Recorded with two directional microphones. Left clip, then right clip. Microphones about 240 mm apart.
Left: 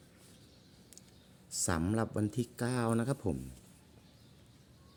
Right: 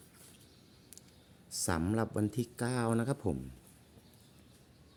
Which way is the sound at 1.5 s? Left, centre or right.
Centre.